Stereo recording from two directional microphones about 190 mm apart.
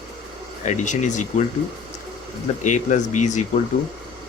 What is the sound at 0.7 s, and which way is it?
Speech, 40° left (ahead or behind).